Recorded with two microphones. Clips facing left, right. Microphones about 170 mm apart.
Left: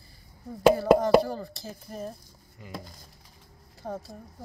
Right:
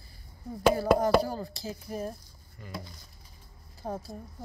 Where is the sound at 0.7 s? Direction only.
5° right (ahead or behind).